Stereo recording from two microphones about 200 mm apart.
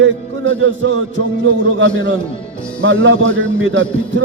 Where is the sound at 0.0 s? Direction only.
70° right (ahead or behind).